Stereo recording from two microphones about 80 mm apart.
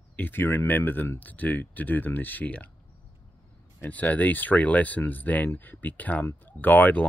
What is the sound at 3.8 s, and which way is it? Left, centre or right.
Speech, centre.